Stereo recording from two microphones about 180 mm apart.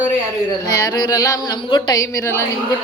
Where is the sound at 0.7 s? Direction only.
20° left (ahead or behind).